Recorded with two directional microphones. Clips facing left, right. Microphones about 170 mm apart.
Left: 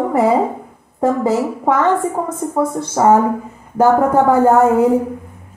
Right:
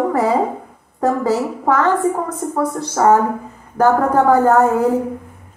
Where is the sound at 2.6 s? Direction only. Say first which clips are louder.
Left 2 dB; 20° left (ahead or behind).